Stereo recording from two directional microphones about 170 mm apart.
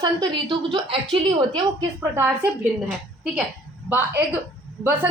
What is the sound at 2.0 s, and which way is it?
Speech, 15° right (ahead or behind).